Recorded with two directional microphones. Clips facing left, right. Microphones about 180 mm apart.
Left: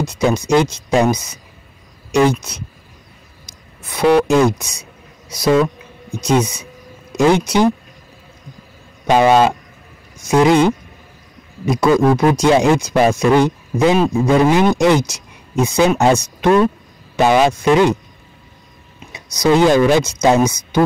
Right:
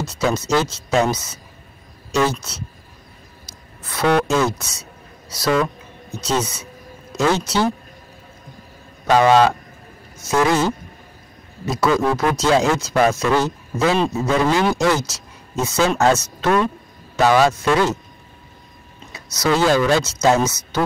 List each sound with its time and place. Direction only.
0.0 s a sound: 15° left (ahead or behind)
0.4 s speech: 15° left (ahead or behind)
3.8 s speech: 15° left (ahead or behind)
6.1 s speech: 10° left (ahead or behind)
9.0 s speech: 15° left (ahead or behind)
19.1 s speech: 15° left (ahead or behind)